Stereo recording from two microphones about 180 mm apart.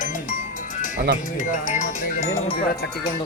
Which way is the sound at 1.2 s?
45° left (ahead or behind).